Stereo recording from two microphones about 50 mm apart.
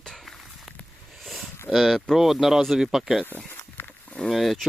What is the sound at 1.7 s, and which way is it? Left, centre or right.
Speech, centre.